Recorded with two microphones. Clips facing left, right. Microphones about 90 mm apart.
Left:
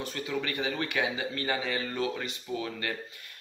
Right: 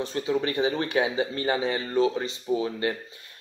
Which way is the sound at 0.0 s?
25° right (ahead or behind).